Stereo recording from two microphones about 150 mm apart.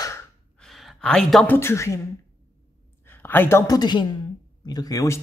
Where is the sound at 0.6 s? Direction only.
Centre (ahead or behind).